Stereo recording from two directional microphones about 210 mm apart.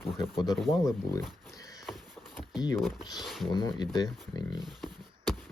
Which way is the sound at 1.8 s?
Centre (ahead or behind).